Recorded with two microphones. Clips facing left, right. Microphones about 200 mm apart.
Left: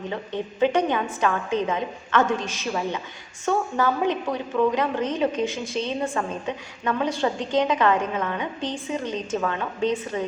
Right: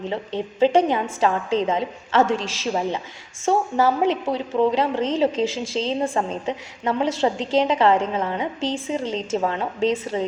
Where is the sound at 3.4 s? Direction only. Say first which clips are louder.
Right 3 dB; 30° right (ahead or behind).